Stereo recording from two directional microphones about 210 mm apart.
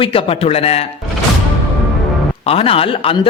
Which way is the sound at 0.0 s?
25° left (ahead or behind).